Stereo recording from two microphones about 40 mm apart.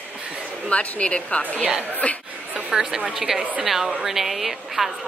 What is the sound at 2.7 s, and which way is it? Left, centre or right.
A woman's voice, centre.